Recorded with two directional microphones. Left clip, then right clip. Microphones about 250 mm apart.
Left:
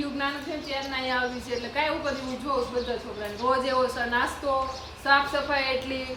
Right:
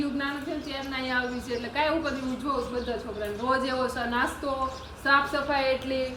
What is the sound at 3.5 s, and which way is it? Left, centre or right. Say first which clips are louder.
A woman's voice: left 3 dB; centre.